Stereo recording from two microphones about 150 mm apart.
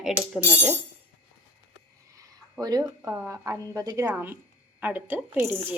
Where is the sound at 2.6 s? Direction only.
25° right (ahead or behind).